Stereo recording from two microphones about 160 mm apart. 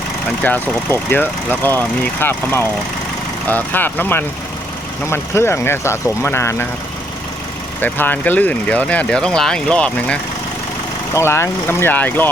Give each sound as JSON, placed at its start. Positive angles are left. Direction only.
{"t": 0.4, "sound": "speech", "side_deg": 10}
{"t": 7.8, "sound": "speech", "side_deg": 10}